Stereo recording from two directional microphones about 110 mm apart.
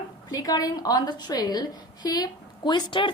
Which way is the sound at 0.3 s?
35° left (ahead or behind).